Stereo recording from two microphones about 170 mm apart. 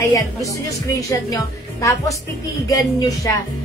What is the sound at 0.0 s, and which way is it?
A woman's voice, 20° left (ahead or behind).